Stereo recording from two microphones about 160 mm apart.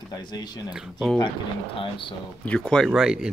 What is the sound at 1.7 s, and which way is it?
Speech, 30° left (ahead or behind).